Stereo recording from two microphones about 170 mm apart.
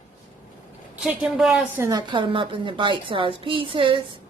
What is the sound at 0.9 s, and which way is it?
Speech, 5° right (ahead or behind).